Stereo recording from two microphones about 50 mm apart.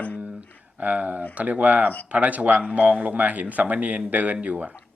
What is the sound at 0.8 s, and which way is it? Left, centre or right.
Speech, right.